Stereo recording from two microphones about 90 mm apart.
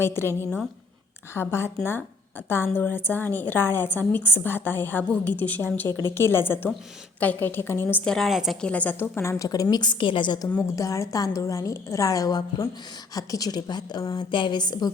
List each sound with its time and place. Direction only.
0.0 s a woman's voice: 30° left (ahead or behind)
1.3 s a woman's voice: 30° left (ahead or behind)
8.0 s a woman's voice: 5° left (ahead or behind)
8.6 s a woman's voice: 15° left (ahead or behind)
9.5 s a woman's voice: 45° left (ahead or behind); by 10.4 s 60° left (ahead or behind)
10.6 s a woman's voice: 35° left (ahead or behind); by 14.8 s 55° left (ahead or behind)